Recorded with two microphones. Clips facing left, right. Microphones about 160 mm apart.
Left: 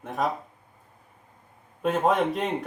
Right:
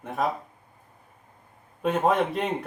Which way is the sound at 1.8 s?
Centre (ahead or behind).